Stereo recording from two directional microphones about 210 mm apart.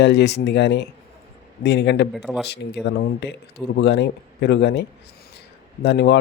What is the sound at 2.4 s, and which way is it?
Speech, 55° left (ahead or behind).